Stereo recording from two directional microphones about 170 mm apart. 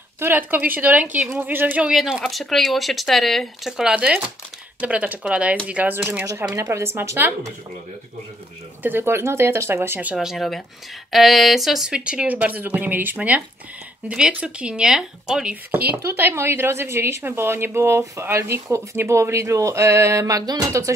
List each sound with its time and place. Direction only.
0.2 s a woman's voice: 10° right (ahead or behind)
8.8 s a woman's voice: 15° right (ahead or behind)
16.0 s a woman's voice: 15° right (ahead or behind)